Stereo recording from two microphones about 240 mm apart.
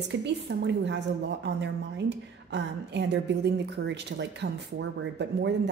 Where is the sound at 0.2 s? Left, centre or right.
Right.